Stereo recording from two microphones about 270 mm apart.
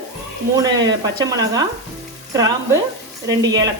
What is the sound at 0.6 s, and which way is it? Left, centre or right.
Speech, centre.